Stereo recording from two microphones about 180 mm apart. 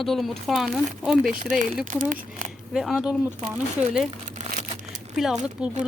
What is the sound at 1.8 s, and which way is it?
Speech, 45° right (ahead or behind).